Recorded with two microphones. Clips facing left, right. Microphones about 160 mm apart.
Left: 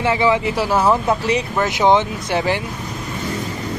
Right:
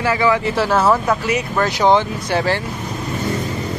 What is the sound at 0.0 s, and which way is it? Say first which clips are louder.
Speech: even; 25° left (ahead or behind).